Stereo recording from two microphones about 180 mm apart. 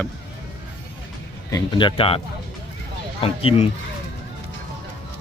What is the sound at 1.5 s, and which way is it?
Speech, 20° left (ahead or behind).